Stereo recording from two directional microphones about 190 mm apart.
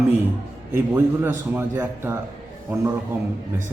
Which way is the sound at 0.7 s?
10° right (ahead or behind).